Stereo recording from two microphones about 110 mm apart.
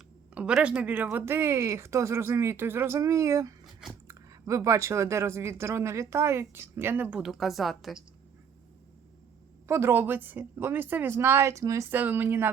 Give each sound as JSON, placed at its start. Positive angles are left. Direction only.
{"t": 0.3, "sound": "speech", "side_deg": -10}
{"t": 3.6, "sound": "chewing", "side_deg": -5}
{"t": 4.1, "sound": "speech", "side_deg": -30}
{"t": 7.2, "sound": "a woman's voice", "side_deg": 0}
{"t": 9.6, "sound": "speech", "side_deg": -25}